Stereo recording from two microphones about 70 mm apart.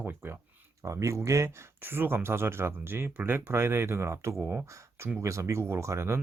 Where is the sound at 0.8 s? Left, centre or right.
Right.